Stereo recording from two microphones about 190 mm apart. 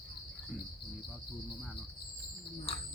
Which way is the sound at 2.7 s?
30° left (ahead or behind).